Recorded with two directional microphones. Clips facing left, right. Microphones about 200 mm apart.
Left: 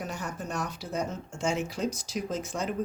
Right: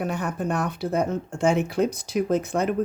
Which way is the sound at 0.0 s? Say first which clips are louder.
Right 9 dB; 60° right (ahead or behind).